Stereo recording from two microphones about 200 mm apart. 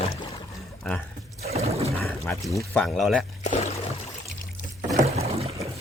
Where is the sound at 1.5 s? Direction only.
30° right (ahead or behind).